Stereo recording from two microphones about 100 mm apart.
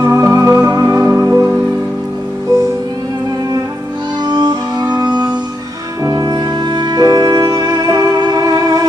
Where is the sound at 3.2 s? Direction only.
40° right (ahead or behind).